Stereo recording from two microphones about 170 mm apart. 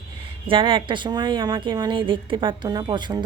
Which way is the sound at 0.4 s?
30° right (ahead or behind).